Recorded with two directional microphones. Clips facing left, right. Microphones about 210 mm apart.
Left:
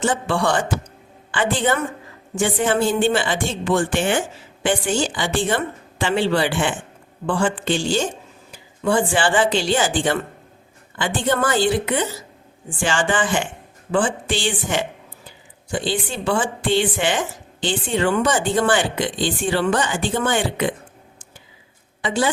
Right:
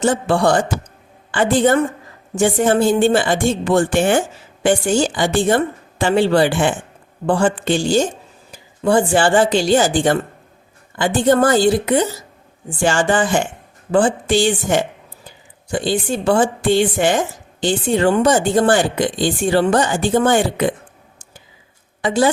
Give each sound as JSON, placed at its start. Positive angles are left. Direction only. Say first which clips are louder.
{"t": 0.0, "sound": "a woman's voice", "louder": "right 5 dB", "side_deg": -40}
{"t": 22.0, "sound": "a woman's voice", "louder": "right 5 dB", "side_deg": -40}